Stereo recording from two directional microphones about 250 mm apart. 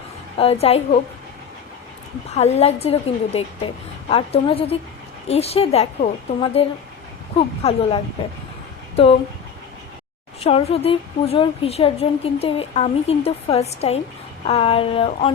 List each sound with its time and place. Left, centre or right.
0.3 s a woman's voice: left
2.3 s a woman's voice: left
10.4 s a woman's voice: left